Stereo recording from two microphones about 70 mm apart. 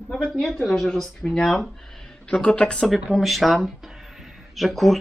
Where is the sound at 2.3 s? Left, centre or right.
Centre.